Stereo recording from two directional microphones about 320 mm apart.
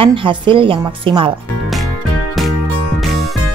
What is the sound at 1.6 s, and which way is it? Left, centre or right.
Music, centre.